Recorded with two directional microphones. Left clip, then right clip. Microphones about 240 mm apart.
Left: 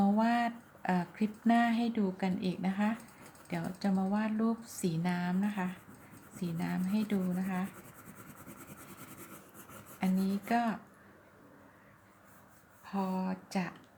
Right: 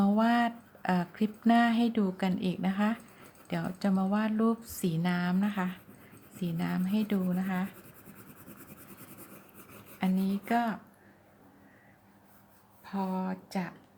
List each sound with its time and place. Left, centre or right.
0.0 s a sound: centre
3.5 s speech: centre
10.0 s speech: centre
12.8 s speech: centre